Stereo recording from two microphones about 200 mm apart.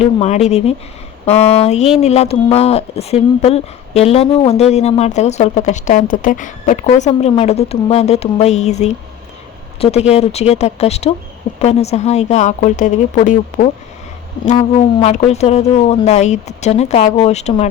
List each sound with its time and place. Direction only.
0.0 s speech: 30° left (ahead or behind)